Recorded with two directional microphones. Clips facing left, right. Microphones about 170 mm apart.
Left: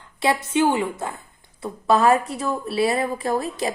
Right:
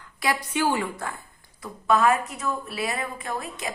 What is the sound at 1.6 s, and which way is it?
A woman's voice, 30° left (ahead or behind).